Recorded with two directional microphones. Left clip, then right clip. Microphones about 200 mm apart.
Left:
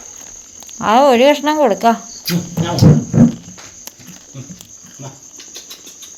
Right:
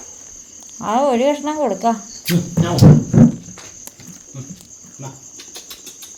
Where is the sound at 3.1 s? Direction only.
40° right (ahead or behind).